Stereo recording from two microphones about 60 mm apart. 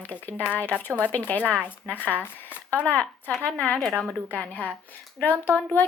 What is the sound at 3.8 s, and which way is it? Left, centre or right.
Speech, centre.